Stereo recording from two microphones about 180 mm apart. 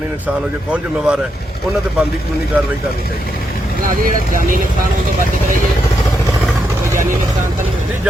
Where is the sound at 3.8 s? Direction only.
50° right (ahead or behind).